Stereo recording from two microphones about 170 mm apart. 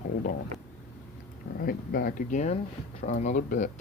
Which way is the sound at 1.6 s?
60° left (ahead or behind).